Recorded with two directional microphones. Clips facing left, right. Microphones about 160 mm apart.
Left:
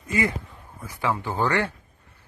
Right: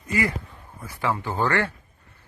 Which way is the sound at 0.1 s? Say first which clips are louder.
Even; 20° left (ahead or behind).